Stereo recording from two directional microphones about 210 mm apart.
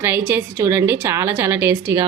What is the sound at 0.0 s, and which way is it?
A woman's voice, 10° right (ahead or behind).